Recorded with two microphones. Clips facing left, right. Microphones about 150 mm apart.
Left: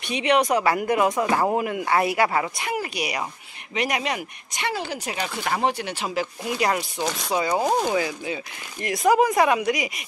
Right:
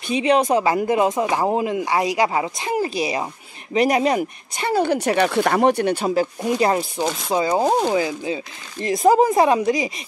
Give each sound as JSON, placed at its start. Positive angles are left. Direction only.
{"t": 0.1, "sound": "speech", "side_deg": -30}
{"t": 4.7, "sound": "speech", "side_deg": -60}
{"t": 7.0, "sound": "speech", "side_deg": -20}